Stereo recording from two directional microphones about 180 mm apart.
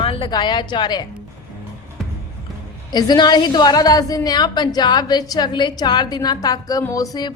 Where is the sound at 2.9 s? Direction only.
25° left (ahead or behind).